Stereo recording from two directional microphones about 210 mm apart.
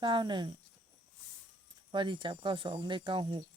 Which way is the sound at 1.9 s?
20° right (ahead or behind).